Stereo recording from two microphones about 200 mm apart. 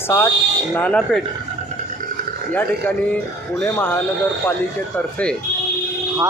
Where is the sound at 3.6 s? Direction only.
10° left (ahead or behind).